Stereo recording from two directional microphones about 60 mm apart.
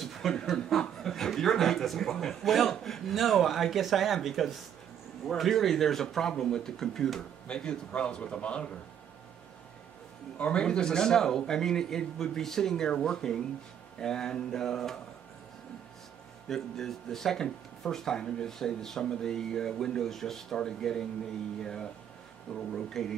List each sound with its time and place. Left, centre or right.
0.0 s chuckle: centre
0.7 s speech: centre
10.3 s speech: centre
16.4 s speech: centre
22.6 s speech: centre